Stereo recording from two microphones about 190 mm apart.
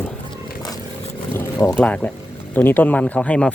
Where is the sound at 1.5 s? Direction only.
20° left (ahead or behind).